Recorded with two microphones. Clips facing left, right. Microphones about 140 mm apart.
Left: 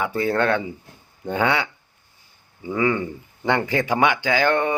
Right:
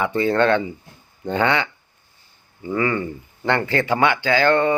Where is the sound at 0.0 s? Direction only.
5° left (ahead or behind).